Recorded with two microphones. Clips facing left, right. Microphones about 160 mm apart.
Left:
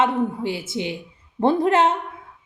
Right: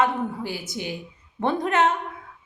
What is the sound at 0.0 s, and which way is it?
A woman's voice, 25° left (ahead or behind).